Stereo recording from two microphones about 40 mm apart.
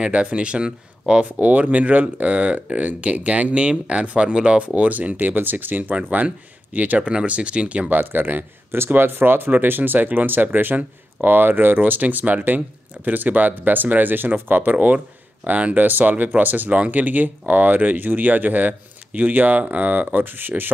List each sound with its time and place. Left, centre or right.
0.0 s speech: right
1.4 s speech: right
4.7 s speech: right
5.9 s speech: right
7.1 s speech: right
7.9 s speech: right
8.7 s speech: right